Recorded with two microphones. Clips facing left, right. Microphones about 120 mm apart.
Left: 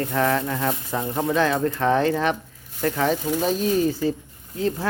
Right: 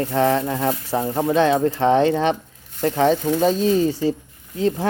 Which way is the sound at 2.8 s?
30° right (ahead or behind).